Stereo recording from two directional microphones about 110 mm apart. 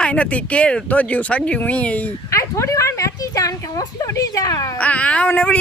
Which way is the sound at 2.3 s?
30° left (ahead or behind).